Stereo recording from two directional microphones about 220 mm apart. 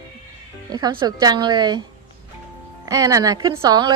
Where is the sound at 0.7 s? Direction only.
20° right (ahead or behind).